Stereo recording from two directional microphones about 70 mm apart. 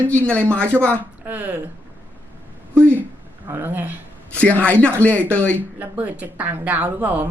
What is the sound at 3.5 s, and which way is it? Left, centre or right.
Speech, right.